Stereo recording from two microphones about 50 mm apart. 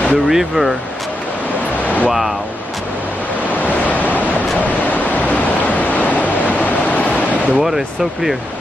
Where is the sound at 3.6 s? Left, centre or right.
Left.